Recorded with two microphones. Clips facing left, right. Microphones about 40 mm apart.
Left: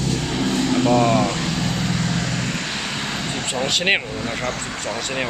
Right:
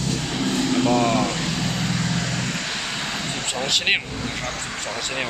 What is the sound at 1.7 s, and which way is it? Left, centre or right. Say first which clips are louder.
Vehicle: left 2 dB; centre.